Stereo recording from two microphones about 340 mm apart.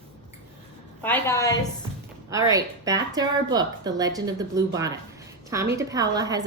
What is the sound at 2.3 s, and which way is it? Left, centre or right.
Speech, centre.